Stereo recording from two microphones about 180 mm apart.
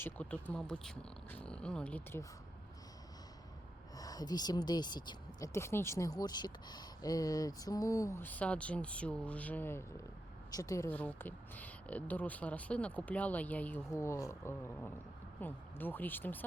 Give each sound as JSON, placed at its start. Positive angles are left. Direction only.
{"t": 0.0, "sound": "speech", "side_deg": 10}
{"t": 3.9, "sound": "speech", "side_deg": 20}